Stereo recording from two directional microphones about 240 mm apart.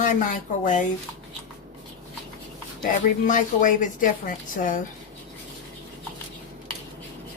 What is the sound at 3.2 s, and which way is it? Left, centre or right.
A woman's voice, left.